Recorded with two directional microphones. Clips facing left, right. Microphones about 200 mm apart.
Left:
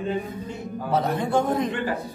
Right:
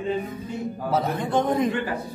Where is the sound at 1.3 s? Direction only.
5° left (ahead or behind).